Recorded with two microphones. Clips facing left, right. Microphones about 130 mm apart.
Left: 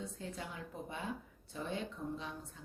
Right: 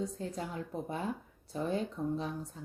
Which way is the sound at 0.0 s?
40° right (ahead or behind).